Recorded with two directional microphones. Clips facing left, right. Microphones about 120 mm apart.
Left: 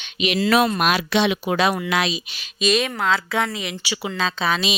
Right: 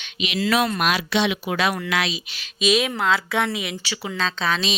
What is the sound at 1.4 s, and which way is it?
A woman's voice, 30° left (ahead or behind).